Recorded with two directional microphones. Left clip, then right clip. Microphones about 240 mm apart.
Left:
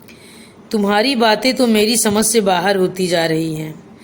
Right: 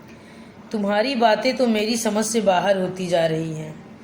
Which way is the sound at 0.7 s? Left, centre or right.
Left.